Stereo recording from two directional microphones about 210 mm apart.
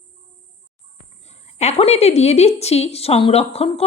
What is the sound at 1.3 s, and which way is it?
A woman's voice, 30° left (ahead or behind).